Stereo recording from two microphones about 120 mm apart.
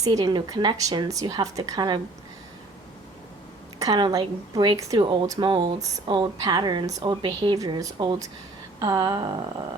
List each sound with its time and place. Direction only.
0.0 s speech: 30° right (ahead or behind)
3.8 s speech: 35° right (ahead or behind)
5.5 s speech: 45° right (ahead or behind)